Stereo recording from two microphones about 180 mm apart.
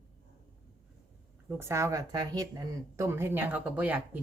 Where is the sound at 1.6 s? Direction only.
15° right (ahead or behind).